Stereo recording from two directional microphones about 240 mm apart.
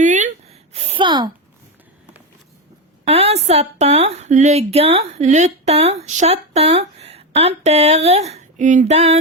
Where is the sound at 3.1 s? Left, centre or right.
Right.